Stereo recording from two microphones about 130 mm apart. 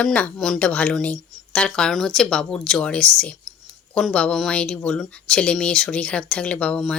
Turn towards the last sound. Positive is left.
turn(degrees=5)  # may be behind; listen again after turning